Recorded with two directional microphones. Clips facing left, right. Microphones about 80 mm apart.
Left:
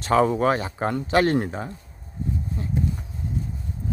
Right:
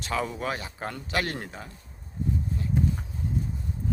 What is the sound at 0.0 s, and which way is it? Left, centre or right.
Speech, left.